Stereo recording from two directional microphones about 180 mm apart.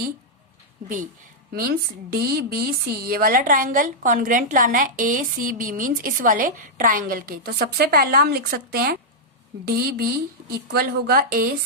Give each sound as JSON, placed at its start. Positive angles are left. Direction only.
{"t": 2.1, "sound": "a woman's voice", "side_deg": -60}